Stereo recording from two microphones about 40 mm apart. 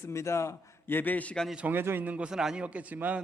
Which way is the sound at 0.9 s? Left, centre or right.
Left.